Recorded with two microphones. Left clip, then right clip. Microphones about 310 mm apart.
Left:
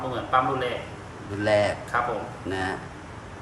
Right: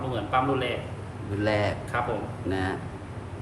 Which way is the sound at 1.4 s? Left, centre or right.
Centre.